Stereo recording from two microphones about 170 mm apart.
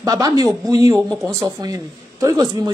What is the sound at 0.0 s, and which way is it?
A man's voice, 20° right (ahead or behind).